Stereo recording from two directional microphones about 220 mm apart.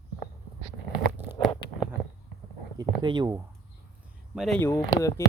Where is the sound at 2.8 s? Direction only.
20° right (ahead or behind).